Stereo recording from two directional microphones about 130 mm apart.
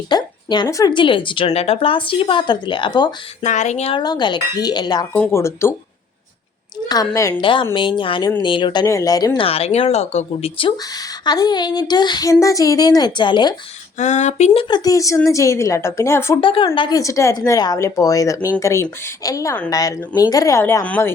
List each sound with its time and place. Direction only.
0.1 s a woman's voice: 35° left (ahead or behind)
1.5 s a child's voice: 50° left (ahead or behind); by 3.1 s 35° left (ahead or behind)
3.4 s speech: 65° left (ahead or behind)
3.9 s a child's voice: 35° left (ahead or behind)
5.1 s a woman's voice: 15° left (ahead or behind)
6.8 s a woman's voice: 30° left (ahead or behind)
7.4 s a child's voice: 40° left (ahead or behind)
9.4 s speech: 50° left (ahead or behind)
11.3 s a child's voice: 35° left (ahead or behind)
14.0 s speech: 60° left (ahead or behind); by 14.8 s 45° left (ahead or behind)
14.8 s a woman's voice: 25° left (ahead or behind)
16.4 s a child's voice: 40° left (ahead or behind)
16.9 s a woman's voice: 25° left (ahead or behind)